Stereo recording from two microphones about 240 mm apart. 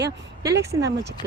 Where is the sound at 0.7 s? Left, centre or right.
Right.